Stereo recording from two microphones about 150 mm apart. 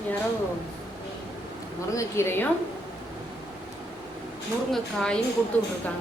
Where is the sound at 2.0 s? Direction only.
15° left (ahead or behind).